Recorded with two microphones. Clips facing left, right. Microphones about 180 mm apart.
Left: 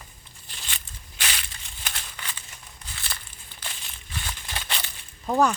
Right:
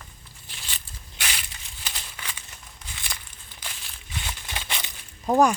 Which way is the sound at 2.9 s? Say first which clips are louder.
Even; 15° right (ahead or behind).